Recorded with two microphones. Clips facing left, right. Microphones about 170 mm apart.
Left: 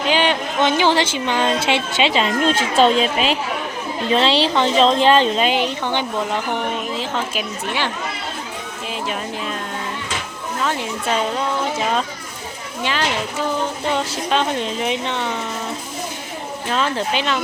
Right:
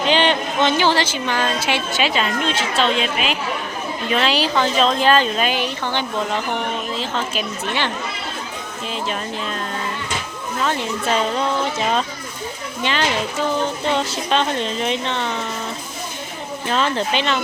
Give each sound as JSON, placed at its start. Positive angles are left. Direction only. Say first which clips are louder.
{"t": 0.1, "sound": "speech", "louder": "even", "side_deg": 10}
{"t": 2.4, "sound": "speech", "louder": "left 5 dB", "side_deg": 45}
{"t": 12.8, "sound": "speech", "louder": "right 1 dB", "side_deg": 5}
{"t": 16.7, "sound": "speech", "louder": "right 1 dB", "side_deg": 5}